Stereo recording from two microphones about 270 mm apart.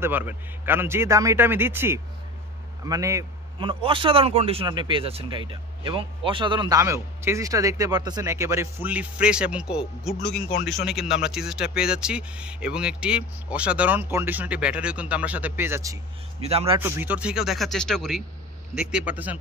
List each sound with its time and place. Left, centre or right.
0.0 s a man's voice: centre
10.3 s speech: left
10.7 s speech: centre; by 16.8 s right
16.8 s speech: centre